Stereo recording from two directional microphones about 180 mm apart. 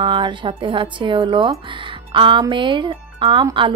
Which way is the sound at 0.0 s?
25° right (ahead or behind).